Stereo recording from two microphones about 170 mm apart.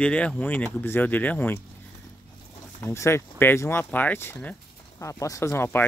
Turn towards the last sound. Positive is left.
turn(degrees=15)  # may be behind; listen again after turning